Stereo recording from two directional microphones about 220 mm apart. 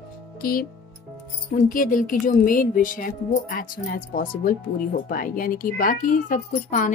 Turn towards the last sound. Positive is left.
turn(degrees=35)  # may be behind; listen again after turning